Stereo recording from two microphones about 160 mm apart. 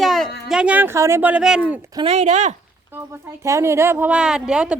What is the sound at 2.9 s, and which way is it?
Speech, 15° right (ahead or behind).